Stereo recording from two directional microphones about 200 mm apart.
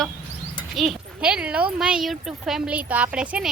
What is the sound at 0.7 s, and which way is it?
Speech, centre (ahead or behind).